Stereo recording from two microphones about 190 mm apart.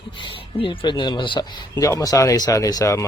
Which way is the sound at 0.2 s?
25° left (ahead or behind).